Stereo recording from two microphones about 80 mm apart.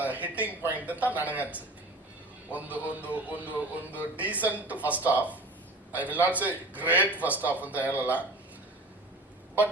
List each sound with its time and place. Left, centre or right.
0.0 s speech: right